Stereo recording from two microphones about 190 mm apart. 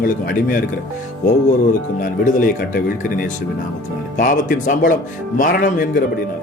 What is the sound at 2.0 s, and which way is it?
Speech, 45° left (ahead or behind).